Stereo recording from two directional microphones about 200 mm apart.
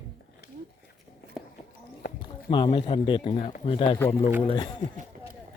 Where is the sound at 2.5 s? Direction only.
25° left (ahead or behind).